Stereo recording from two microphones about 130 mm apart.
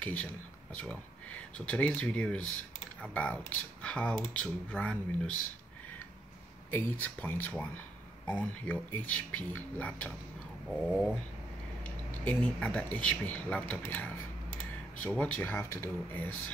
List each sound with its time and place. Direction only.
0.0 s speech: 10° left (ahead or behind)
6.7 s speech: 15° left (ahead or behind)
10.7 s a sound: 5° left (ahead or behind)
12.3 s speech: 10° left (ahead or behind)